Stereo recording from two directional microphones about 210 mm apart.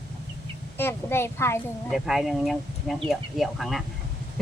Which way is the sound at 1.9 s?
Centre (ahead or behind).